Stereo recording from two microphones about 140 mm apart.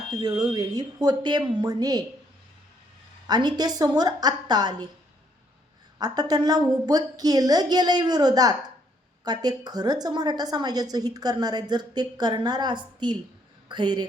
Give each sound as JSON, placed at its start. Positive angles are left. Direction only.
{"t": 0.1, "sound": "a woman's voice", "side_deg": -30}
{"t": 3.2, "sound": "a woman's voice", "side_deg": -30}
{"t": 6.0, "sound": "a woman's voice", "side_deg": -30}